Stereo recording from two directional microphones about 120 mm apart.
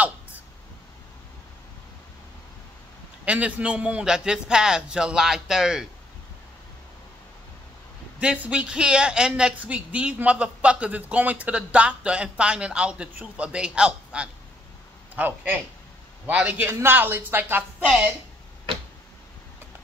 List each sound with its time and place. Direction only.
3.3 s speech: 10° right (ahead or behind)
8.2 s speech: 10° right (ahead or behind)